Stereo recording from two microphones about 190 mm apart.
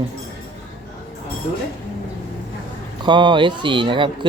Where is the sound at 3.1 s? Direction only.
25° right (ahead or behind).